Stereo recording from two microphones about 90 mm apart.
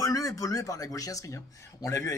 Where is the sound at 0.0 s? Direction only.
40° left (ahead or behind).